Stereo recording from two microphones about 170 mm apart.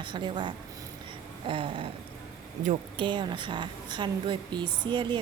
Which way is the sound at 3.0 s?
25° right (ahead or behind).